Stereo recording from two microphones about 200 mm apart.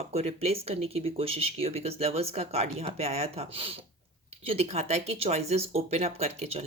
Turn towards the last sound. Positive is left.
turn(degrees=-30)  # may be behind; listen again after turning